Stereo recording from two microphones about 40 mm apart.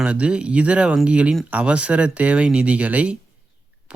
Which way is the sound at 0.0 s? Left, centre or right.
Right.